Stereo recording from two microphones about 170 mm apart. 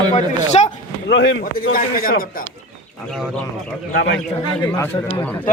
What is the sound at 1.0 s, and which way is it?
Speech, 90° left.